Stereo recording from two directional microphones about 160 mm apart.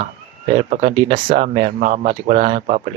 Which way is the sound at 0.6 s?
50° right (ahead or behind).